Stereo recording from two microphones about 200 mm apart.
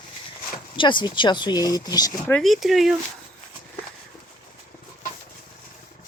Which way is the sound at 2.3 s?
Centre (ahead or behind).